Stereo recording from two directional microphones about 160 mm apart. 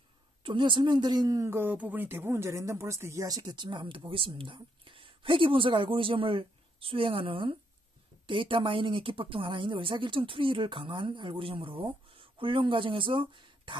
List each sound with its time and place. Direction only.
0.4 s a woman's voice: 30° right (ahead or behind)